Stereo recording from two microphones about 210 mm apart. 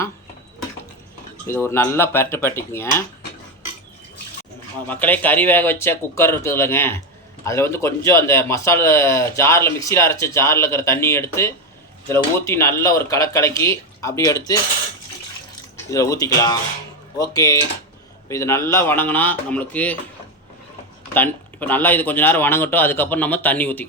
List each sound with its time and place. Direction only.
1.5 s speech: 10° left (ahead or behind)
4.9 s speech: 10° left (ahead or behind)
15.9 s speech: 15° left (ahead or behind)
21.1 s speech: 10° left (ahead or behind)